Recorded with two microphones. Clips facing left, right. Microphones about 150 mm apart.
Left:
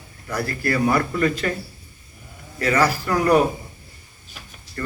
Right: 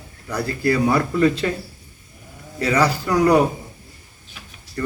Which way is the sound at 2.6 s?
15° right (ahead or behind).